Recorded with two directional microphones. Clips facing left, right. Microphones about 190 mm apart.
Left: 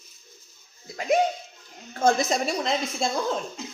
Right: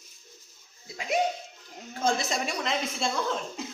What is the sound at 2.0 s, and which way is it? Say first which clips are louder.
A woman's voice: left 6 dB; 45° left (ahead or behind).